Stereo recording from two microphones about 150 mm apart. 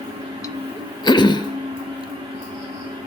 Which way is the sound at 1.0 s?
30° left (ahead or behind).